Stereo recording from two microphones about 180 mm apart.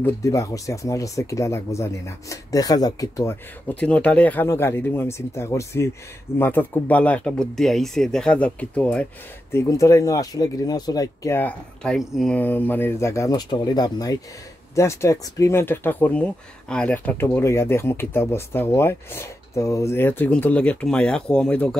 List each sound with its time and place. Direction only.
0.0 s speech: 15° left (ahead or behind)